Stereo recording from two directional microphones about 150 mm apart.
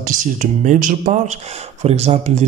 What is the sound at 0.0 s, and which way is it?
Speech, 60° right (ahead or behind).